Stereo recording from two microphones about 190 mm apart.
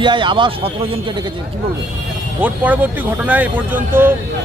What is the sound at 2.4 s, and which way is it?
Speech, 10° right (ahead or behind).